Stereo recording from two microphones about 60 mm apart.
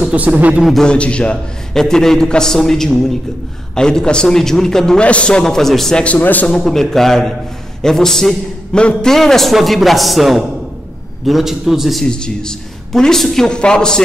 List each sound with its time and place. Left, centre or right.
0.1 s speech: right
0.8 s a man's voice: centre
1.7 s a man's voice: centre
6.0 s a man's voice: left
6.4 s a man's voice: centre
12.1 s a man's voice: centre